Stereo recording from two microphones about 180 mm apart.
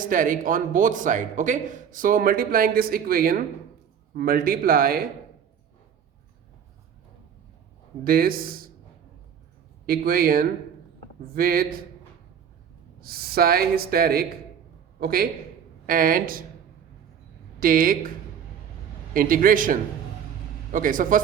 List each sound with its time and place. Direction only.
0.0 s speech: 50° right (ahead or behind)
8.0 s speech: 55° right (ahead or behind)
9.8 s speech: 55° right (ahead or behind)
13.0 s speech: 55° right (ahead or behind)
17.6 s speech: 50° right (ahead or behind)
19.1 s speech: 50° right (ahead or behind)